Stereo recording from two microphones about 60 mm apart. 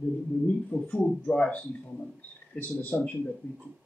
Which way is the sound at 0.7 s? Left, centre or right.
Centre.